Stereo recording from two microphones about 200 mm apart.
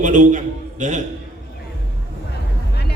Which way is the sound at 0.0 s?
40° right (ahead or behind).